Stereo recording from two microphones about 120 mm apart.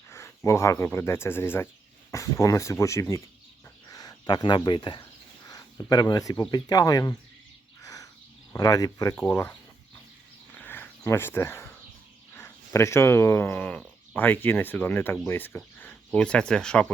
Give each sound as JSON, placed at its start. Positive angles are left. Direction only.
{"t": 0.1, "sound": "a sound", "side_deg": 25}
{"t": 0.9, "sound": "speech", "side_deg": 20}
{"t": 5.5, "sound": "speech", "side_deg": 30}
{"t": 8.5, "sound": "speech", "side_deg": 30}
{"t": 9.1, "sound": "speech", "side_deg": 10}
{"t": 10.5, "sound": "a sound", "side_deg": 15}
{"t": 12.3, "sound": "speech", "side_deg": 20}